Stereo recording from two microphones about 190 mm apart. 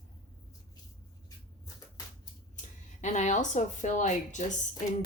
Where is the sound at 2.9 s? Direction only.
40° left (ahead or behind).